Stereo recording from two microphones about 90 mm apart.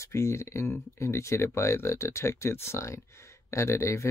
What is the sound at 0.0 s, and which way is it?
Speech, 35° left (ahead or behind).